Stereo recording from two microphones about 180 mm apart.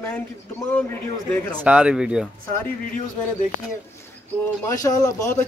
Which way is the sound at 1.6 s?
5° right (ahead or behind).